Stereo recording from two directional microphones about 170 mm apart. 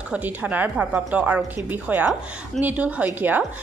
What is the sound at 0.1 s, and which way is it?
A woman's voice, 10° right (ahead or behind).